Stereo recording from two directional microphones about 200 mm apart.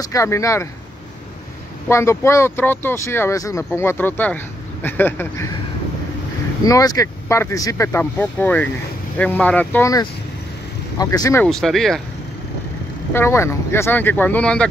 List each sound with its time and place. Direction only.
0.0 s speech: 15° left (ahead or behind)
1.9 s speech: 15° left (ahead or behind)
6.6 s speech: 20° left (ahead or behind)
11.4 s speech: centre (ahead or behind)
13.1 s speech: 10° left (ahead or behind)